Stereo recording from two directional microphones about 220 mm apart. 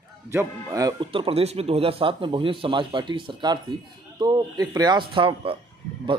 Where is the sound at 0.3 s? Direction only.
10° right (ahead or behind).